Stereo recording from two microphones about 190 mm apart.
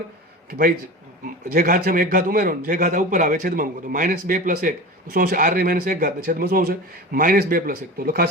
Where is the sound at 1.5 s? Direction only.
45° right (ahead or behind).